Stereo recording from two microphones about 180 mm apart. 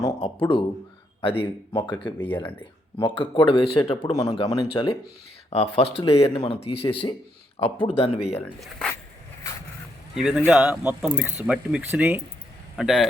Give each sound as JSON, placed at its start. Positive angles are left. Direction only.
{"t": 0.2, "sound": "speech", "side_deg": 30}
{"t": 2.1, "sound": "speech", "side_deg": 10}
{"t": 3.0, "sound": "speech", "side_deg": 25}
{"t": 8.4, "sound": "speech", "side_deg": 0}
{"t": 10.2, "sound": "speech", "side_deg": -5}